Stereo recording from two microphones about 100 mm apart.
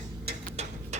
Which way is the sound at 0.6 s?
90° right.